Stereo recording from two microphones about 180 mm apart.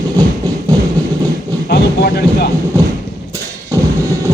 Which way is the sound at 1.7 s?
65° left (ahead or behind).